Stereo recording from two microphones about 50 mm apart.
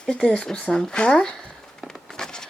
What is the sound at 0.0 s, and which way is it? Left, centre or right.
Speech, centre.